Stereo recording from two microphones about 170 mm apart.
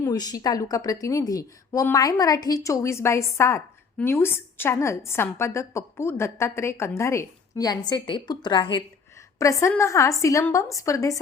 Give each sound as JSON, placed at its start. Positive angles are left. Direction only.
{"t": 0.0, "sound": "a woman's voice", "side_deg": 20}